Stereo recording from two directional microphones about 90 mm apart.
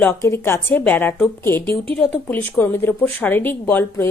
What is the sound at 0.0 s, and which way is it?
Speech, 30° left (ahead or behind).